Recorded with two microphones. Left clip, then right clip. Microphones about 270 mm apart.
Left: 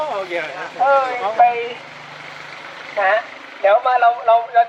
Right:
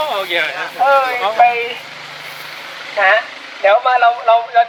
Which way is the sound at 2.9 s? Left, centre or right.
Centre.